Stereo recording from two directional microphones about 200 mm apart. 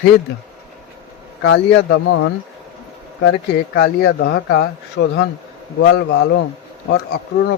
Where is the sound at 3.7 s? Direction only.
60° left (ahead or behind).